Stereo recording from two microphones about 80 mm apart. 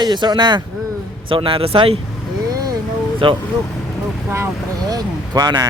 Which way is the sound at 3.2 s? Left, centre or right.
Right.